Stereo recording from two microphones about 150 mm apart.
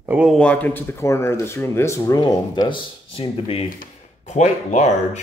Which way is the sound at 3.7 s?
50° left (ahead or behind).